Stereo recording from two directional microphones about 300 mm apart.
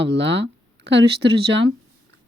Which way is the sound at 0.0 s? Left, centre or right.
Right.